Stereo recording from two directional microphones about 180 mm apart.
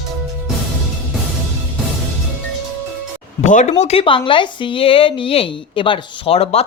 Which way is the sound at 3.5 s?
45° left (ahead or behind).